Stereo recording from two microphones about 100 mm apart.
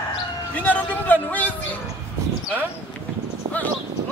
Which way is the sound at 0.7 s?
15° left (ahead or behind).